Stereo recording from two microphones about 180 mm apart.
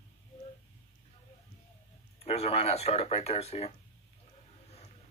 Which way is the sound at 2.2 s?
35° left (ahead or behind).